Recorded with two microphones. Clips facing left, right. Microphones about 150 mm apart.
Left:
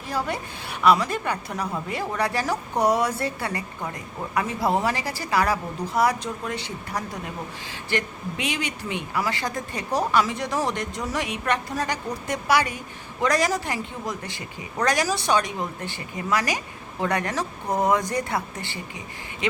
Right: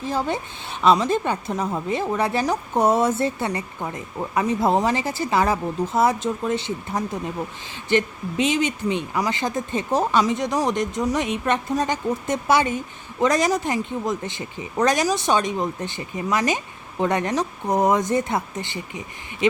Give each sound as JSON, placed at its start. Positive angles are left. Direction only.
{"t": 0.1, "sound": "a woman's voice", "side_deg": -25}